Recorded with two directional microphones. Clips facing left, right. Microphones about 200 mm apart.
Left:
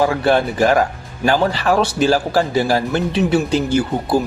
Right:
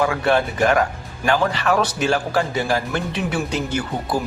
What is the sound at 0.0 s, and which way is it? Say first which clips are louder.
Speech: left 3 dB; 35° left (ahead or behind).